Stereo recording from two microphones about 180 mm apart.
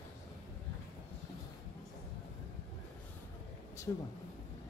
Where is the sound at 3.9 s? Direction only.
20° left (ahead or behind).